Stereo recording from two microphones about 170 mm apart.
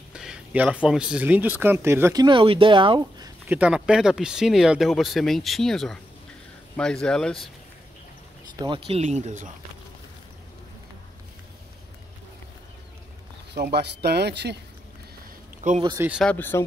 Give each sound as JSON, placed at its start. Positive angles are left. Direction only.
{"t": 0.1, "sound": "speech", "side_deg": -5}
{"t": 2.2, "sound": "speech", "side_deg": -30}
{"t": 3.4, "sound": "speech", "side_deg": -10}
{"t": 8.5, "sound": "speech", "side_deg": -30}
{"t": 13.6, "sound": "speech", "side_deg": -70}
{"t": 15.6, "sound": "speech", "side_deg": -45}
{"t": 16.0, "sound": "speech", "side_deg": -5}
{"t": 16.3, "sound": "speech", "side_deg": 10}